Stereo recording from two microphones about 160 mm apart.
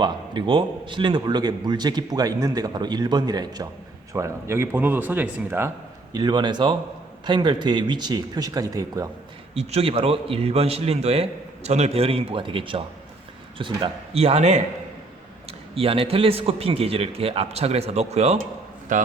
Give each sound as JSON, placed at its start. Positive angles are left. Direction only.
{"t": 0.0, "sound": "a man's voice", "side_deg": -30}
{"t": 6.1, "sound": "a man's voice", "side_deg": -25}
{"t": 9.6, "sound": "a man's voice", "side_deg": -40}
{"t": 18.9, "sound": "a man's voice", "side_deg": -55}